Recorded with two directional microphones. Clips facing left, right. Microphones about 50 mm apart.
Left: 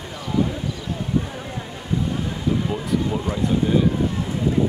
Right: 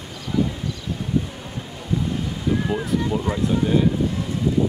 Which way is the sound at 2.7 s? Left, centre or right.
Centre.